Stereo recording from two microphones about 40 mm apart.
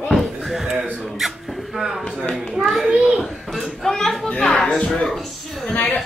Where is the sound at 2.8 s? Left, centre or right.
Right.